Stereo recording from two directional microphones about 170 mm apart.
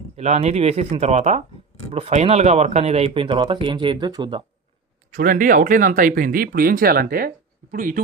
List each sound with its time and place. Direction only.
0.2 s speech: 40° right (ahead or behind)
5.1 s speech: 55° right (ahead or behind)